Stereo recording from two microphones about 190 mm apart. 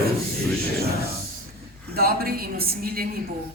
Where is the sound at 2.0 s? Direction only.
50° right (ahead or behind).